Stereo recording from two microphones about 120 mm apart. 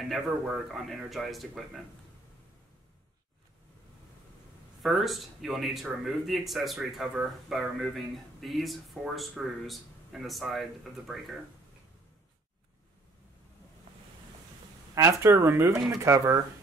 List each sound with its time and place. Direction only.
0.1 s speech: centre (ahead or behind)
4.8 s speech: centre (ahead or behind)
15.0 s speech: 25° right (ahead or behind)